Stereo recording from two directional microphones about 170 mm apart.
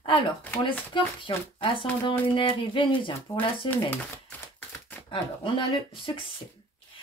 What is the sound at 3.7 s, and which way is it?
Speech, 10° left (ahead or behind).